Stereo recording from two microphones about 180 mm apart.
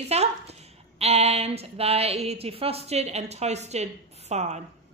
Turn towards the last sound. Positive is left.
turn(degrees=-40)  # may be behind; listen again after turning